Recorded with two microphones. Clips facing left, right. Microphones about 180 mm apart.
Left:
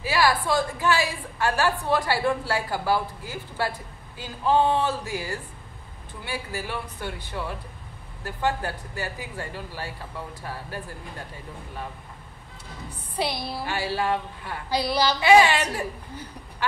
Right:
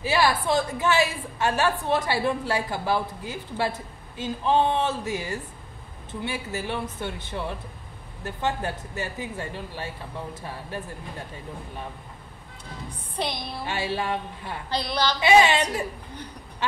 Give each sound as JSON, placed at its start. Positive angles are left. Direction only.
{"t": 0.0, "sound": "a woman's voice", "side_deg": -25}
{"t": 13.2, "sound": "a woman's voice", "side_deg": 5}
{"t": 13.7, "sound": "a woman's voice", "side_deg": -20}
{"t": 14.7, "sound": "a woman's voice", "side_deg": 10}
{"t": 15.1, "sound": "a woman's voice", "side_deg": -20}